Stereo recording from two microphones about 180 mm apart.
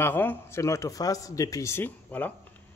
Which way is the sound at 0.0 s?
10° left (ahead or behind).